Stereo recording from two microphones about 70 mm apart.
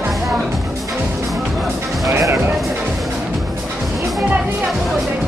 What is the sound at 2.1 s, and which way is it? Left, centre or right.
Music, right.